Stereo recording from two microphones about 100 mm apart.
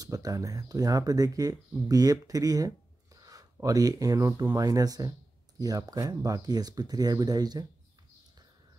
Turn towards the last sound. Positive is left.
turn(degrees=-40)  # may be behind; listen again after turning